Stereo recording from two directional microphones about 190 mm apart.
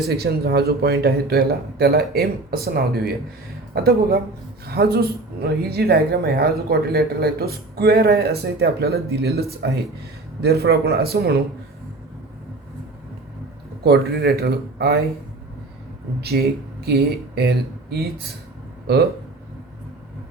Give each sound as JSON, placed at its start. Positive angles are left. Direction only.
{"t": 0.1, "sound": "speech", "side_deg": -55}
{"t": 13.8, "sound": "speech", "side_deg": -55}
{"t": 16.8, "sound": "speech", "side_deg": -60}